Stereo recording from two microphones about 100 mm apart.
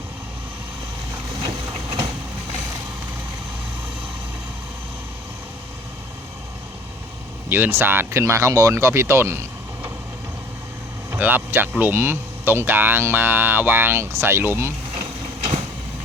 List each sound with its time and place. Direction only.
1.5 s vehicle: 35° right (ahead or behind)
7.5 s speech: 20° right (ahead or behind)
11.1 s speech: 20° right (ahead or behind)